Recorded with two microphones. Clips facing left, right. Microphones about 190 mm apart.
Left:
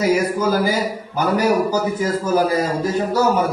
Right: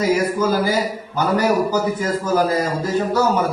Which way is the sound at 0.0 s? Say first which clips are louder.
Even; 10° left (ahead or behind).